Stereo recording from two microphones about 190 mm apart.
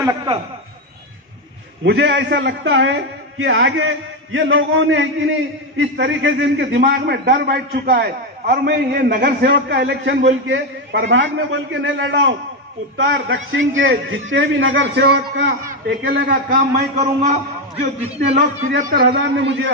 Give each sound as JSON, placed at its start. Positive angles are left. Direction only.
{"t": 0.0, "sound": "a man's voice", "side_deg": -15}
{"t": 1.9, "sound": "a man's voice", "side_deg": -70}
{"t": 12.9, "sound": "a man's voice", "side_deg": -90}
{"t": 18.8, "sound": "a man's voice", "side_deg": -50}